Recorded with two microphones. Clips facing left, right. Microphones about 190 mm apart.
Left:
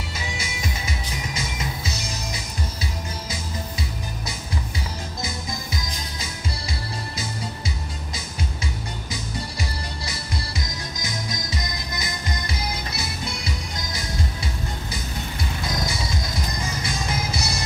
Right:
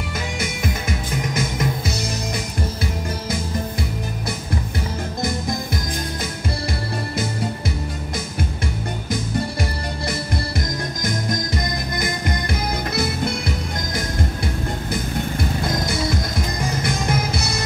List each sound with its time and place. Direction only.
0.4 s music: 55° right (ahead or behind)
9.1 s music: 55° right (ahead or behind)